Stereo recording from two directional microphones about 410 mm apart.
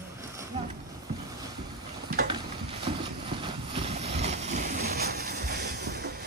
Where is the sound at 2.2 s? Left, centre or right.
Centre.